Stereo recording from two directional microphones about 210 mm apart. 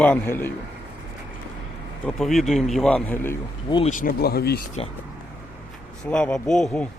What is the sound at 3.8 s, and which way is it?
Speech, 40° left (ahead or behind).